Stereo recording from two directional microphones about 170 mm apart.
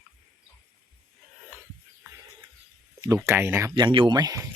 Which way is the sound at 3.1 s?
15° right (ahead or behind).